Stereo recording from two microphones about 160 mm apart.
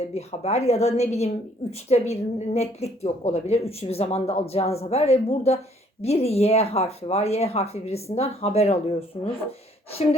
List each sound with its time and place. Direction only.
0.1 s a woman's voice: 40° left (ahead or behind)